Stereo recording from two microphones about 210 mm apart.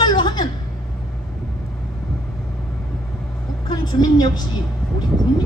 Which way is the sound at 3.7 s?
20° left (ahead or behind).